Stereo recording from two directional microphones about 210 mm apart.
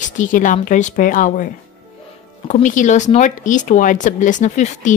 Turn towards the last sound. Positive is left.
turn(degrees=35)  # may be behind; listen again after turning